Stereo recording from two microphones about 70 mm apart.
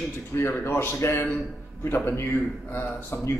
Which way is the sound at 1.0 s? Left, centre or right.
Left.